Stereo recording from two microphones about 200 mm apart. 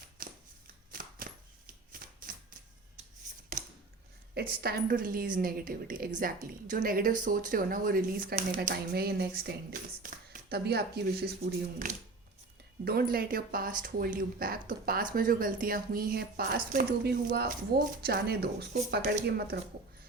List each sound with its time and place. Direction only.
0.2 s a sound: 45° right (ahead or behind)
0.9 s shuffling cards: 45° right (ahead or behind)
4.6 s a woman's voice: 50° right (ahead or behind)
12.8 s a woman's voice: 50° right (ahead or behind)